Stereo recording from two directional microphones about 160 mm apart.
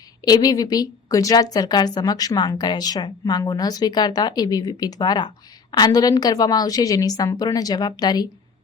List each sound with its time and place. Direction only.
0.3 s a woman's voice: 25° left (ahead or behind)